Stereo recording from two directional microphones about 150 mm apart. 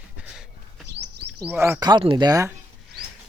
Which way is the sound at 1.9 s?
30° right (ahead or behind).